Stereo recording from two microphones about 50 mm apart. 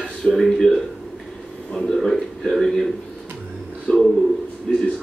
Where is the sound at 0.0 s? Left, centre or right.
Centre.